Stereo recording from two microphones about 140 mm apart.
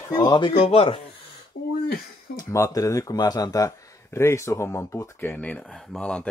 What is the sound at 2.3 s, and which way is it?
Speech, 25° left (ahead or behind).